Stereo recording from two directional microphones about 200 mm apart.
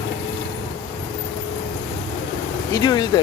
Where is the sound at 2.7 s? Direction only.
20° left (ahead or behind).